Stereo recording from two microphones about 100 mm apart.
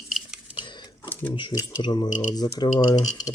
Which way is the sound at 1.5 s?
45° left (ahead or behind).